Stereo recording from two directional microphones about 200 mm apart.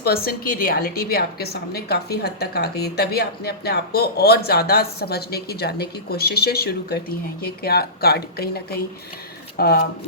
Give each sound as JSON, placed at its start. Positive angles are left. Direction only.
{"t": 0.0, "sound": "a woman's voice", "side_deg": 50}